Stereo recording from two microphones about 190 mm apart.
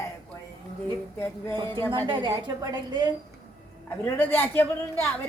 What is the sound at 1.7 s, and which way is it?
Speech, 10° left (ahead or behind).